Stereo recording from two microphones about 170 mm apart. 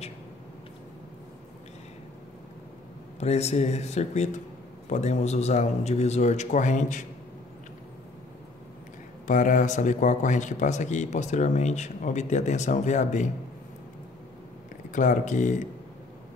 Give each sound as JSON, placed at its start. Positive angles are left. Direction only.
{"t": 3.2, "sound": "a man's voice", "side_deg": 40}
{"t": 9.3, "sound": "speech", "side_deg": 50}
{"t": 14.9, "sound": "speech", "side_deg": 45}